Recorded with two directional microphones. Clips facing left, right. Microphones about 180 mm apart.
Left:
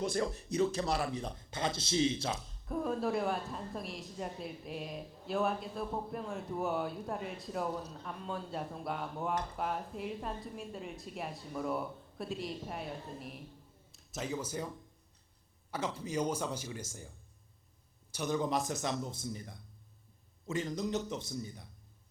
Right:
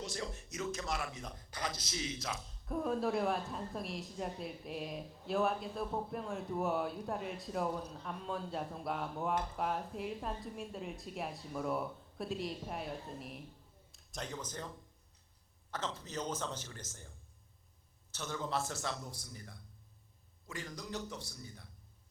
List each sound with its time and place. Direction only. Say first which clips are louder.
0.0 s speech: left 9 dB; 55° left (ahead or behind)
0.3 s a man's voice: left 9 dB; 30° left (ahead or behind)
2.5 s speech: right 3 dB; centre (ahead or behind)
15.7 s speech: left 5 dB; 10° left (ahead or behind)
18.1 s speech: left 6 dB; 15° left (ahead or behind)